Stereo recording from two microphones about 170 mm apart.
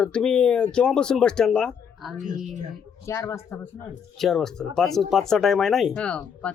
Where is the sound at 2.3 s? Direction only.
45° right (ahead or behind).